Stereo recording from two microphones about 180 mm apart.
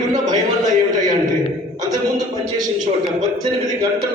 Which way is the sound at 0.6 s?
20° right (ahead or behind).